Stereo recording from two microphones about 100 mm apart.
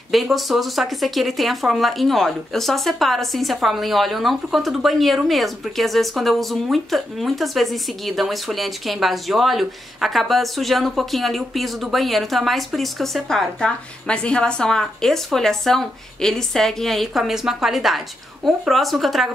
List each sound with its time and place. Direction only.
0.1 s speech: centre (ahead or behind)